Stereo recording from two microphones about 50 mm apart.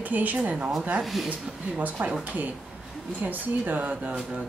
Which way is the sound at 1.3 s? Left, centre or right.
Right.